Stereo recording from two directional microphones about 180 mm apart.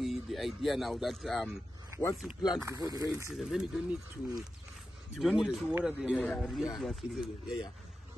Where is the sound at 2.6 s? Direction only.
20° right (ahead or behind).